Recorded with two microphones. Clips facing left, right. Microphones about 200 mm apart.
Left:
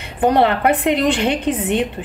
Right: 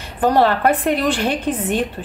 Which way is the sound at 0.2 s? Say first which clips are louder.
Even; 20° left (ahead or behind).